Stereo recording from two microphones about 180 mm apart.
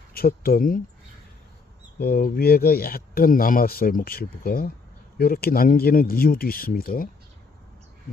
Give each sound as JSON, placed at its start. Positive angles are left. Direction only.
{"t": 0.1, "sound": "speech", "side_deg": 55}
{"t": 2.0, "sound": "speech", "side_deg": 55}